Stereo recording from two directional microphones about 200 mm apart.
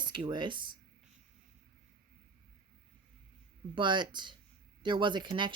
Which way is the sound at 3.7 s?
25° right (ahead or behind).